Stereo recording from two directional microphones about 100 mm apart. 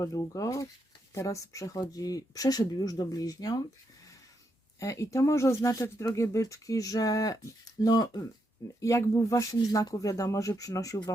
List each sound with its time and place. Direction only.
0.0 s speech: 35° left (ahead or behind)
4.8 s speech: 30° left (ahead or behind)
8.8 s speech: 30° left (ahead or behind)